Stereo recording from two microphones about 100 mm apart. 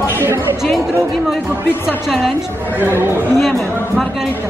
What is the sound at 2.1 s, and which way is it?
Speech, centre (ahead or behind).